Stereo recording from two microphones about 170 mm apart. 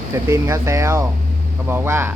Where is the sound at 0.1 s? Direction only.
15° right (ahead or behind).